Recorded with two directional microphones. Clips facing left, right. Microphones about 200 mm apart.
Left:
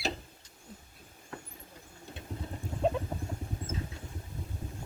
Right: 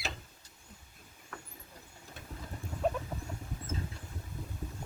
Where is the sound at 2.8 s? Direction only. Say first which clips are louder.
Left 3 dB; 25° left (ahead or behind).